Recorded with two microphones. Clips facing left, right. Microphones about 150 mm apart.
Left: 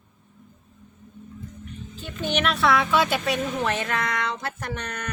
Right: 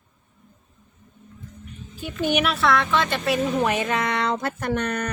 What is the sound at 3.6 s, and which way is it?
Speech, 15° right (ahead or behind).